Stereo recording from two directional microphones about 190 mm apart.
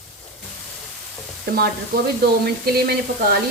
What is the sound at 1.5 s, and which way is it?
Frying, 55° right (ahead or behind).